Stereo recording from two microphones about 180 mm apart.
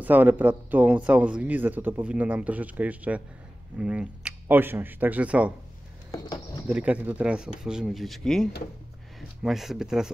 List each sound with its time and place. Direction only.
0.0 s a man's voice: 10° right (ahead or behind)
6.1 s speech: 20° left (ahead or behind)
6.7 s a man's voice: 5° right (ahead or behind)